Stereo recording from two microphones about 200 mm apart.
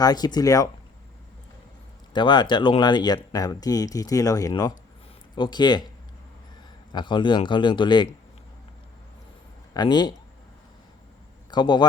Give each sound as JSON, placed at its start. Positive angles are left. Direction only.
{"t": 0.0, "sound": "speech", "side_deg": 20}
{"t": 2.1, "sound": "speech", "side_deg": 20}
{"t": 6.9, "sound": "speech", "side_deg": 25}
{"t": 9.7, "sound": "speech", "side_deg": 20}
{"t": 11.5, "sound": "speech", "side_deg": 20}